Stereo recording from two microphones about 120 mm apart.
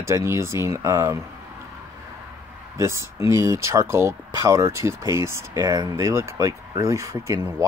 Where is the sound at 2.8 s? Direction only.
25° right (ahead or behind).